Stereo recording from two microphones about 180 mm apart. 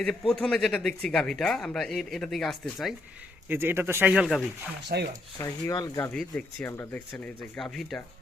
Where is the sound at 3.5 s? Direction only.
10° right (ahead or behind).